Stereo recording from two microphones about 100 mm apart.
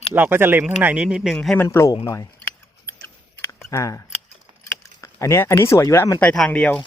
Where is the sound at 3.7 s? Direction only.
30° left (ahead or behind).